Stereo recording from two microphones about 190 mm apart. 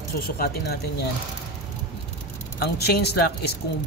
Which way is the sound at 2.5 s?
60° left (ahead or behind).